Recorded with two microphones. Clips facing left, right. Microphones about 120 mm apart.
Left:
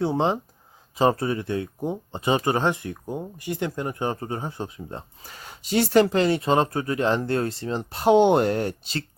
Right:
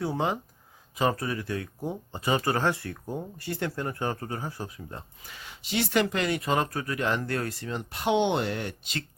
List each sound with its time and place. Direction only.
0.0 s speech: 30° left (ahead or behind)